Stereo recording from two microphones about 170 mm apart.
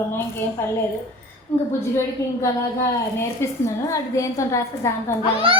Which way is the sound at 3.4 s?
15° left (ahead or behind).